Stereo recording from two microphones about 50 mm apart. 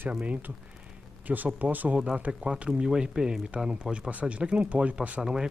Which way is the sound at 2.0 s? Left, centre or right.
Right.